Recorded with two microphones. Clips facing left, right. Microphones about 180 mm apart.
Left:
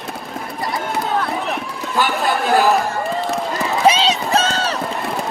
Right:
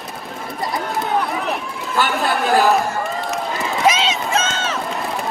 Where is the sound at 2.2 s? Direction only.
Centre (ahead or behind).